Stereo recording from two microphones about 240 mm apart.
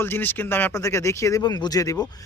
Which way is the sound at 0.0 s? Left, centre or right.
Centre.